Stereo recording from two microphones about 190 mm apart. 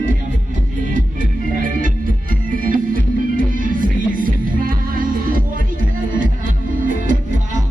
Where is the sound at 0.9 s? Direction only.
45° right (ahead or behind).